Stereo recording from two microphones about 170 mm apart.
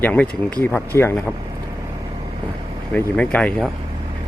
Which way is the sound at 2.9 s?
5° left (ahead or behind).